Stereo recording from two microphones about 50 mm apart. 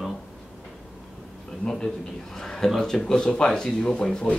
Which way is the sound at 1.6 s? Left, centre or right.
Centre.